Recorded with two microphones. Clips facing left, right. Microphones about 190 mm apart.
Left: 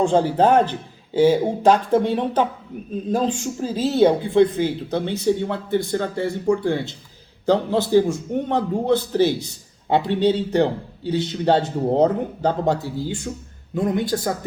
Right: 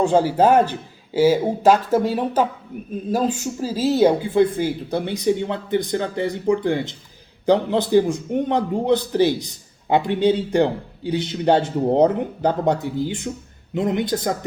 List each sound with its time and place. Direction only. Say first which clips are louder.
0.0 s a man's voice: right 1 dB; 10° right (ahead or behind)